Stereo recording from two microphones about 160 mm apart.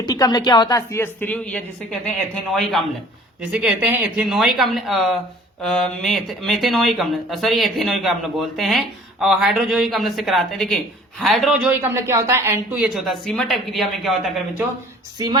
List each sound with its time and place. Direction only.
0.0 s speech: 25° left (ahead or behind); by 2.8 s 5° left (ahead or behind)
3.5 s a woman's voice: 10° right (ahead or behind)
12.8 s speech: centre (ahead or behind)